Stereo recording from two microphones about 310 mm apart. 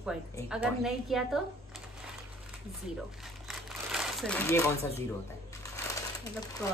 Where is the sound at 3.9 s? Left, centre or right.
Centre.